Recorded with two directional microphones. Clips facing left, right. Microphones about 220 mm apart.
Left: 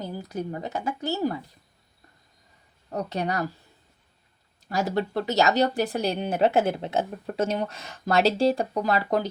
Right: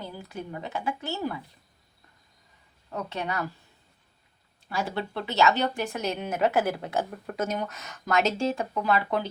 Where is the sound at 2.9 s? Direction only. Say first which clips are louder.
Left 4 dB; 40° left (ahead or behind).